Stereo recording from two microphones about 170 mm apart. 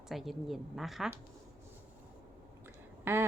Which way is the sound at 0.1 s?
Centre (ahead or behind).